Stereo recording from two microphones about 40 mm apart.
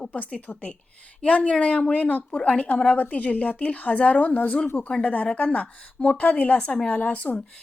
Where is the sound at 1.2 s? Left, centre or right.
Left.